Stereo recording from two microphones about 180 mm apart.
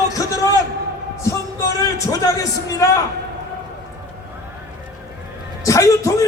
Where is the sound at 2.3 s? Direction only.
20° left (ahead or behind).